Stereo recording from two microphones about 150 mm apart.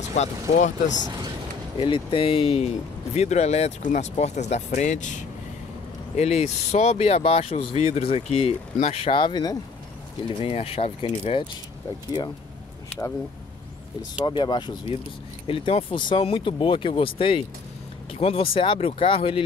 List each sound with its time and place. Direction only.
0.2 s speech: 50° left (ahead or behind)
1.8 s speech: 35° left (ahead or behind)
10.2 s speech: 40° left (ahead or behind)
14.2 s speech: 30° left (ahead or behind)